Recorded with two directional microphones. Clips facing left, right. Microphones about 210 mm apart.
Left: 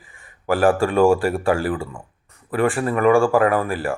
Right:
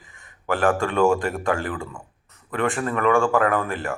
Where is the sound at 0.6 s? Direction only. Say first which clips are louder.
Left 4 dB; 30° left (ahead or behind).